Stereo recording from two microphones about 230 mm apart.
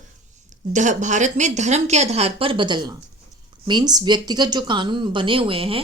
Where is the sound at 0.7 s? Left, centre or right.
Right.